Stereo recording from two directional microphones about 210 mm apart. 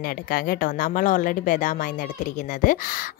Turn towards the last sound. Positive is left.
turn(degrees=40)  # may be behind; listen again after turning